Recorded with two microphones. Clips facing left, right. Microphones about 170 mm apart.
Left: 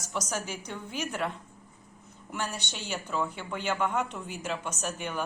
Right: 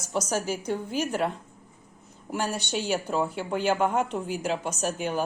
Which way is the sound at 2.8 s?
35° right (ahead or behind).